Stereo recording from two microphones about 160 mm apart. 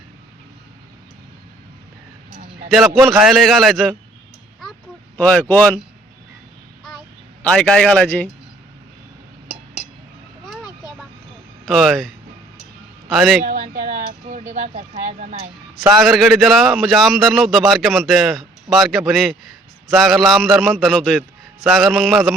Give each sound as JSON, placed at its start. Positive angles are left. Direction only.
{"t": 2.6, "sound": "speech", "side_deg": 0}
{"t": 5.1, "sound": "speech", "side_deg": 10}
{"t": 7.4, "sound": "speech", "side_deg": 5}
{"t": 11.6, "sound": "a man's voice", "side_deg": 0}
{"t": 13.4, "sound": "speech", "side_deg": -55}
{"t": 16.0, "sound": "speech", "side_deg": 0}